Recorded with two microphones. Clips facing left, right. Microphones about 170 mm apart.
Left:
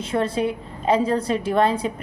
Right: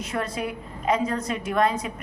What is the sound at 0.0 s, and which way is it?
A woman's voice, 30° left (ahead or behind).